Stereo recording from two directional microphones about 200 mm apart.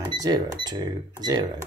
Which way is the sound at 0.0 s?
20° right (ahead or behind).